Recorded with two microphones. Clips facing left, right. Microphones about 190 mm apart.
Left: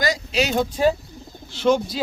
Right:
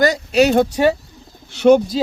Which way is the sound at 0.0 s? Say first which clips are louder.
Right 8 dB; 60° right (ahead or behind).